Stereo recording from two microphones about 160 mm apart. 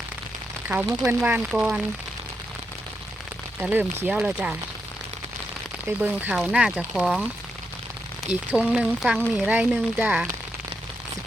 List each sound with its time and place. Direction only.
0.7 s speech: 5° right (ahead or behind)
3.6 s speech: 10° right (ahead or behind)
6.0 s speech: 10° right (ahead or behind)
8.5 s speech: 5° right (ahead or behind)